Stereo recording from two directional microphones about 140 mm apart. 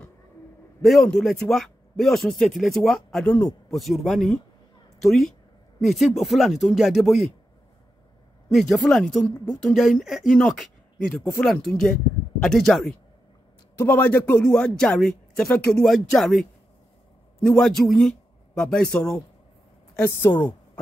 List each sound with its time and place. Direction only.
0.8 s speech: 5° left (ahead or behind)
8.5 s a man's voice: centre (ahead or behind)
20.1 s a woman's voice: 20° left (ahead or behind)